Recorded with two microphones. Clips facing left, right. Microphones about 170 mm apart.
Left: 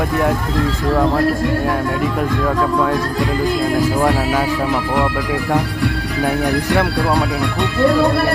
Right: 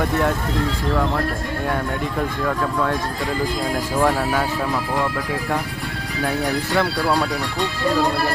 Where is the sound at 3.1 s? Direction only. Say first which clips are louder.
Left 6 dB; 70° left (ahead or behind).